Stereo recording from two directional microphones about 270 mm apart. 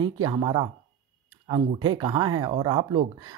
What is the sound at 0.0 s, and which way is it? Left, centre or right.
Speech, centre.